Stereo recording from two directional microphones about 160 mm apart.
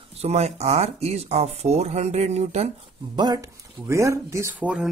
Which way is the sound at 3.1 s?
25° right (ahead or behind).